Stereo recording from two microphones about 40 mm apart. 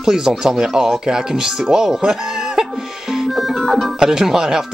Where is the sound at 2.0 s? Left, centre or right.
Centre.